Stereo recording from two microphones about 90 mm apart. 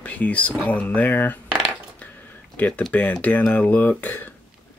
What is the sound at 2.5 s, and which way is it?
Speech, 15° left (ahead or behind).